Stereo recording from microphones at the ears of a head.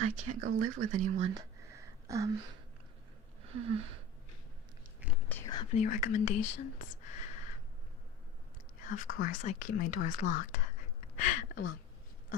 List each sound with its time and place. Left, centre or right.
0.0 s speech: right
3.4 s a sound: right
5.1 s whispering: left
8.8 s speech: left